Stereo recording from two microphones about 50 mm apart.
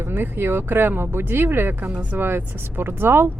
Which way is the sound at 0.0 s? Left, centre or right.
Right.